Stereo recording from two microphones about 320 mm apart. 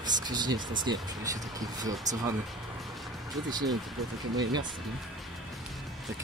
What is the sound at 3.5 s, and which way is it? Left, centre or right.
Speech, centre.